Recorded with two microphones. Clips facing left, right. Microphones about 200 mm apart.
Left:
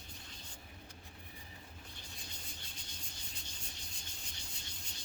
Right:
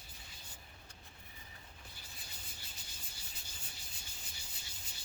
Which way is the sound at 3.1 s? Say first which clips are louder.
Left 3 dB; 5° right (ahead or behind).